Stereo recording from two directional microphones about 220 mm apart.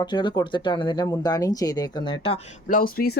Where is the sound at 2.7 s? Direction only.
40° left (ahead or behind).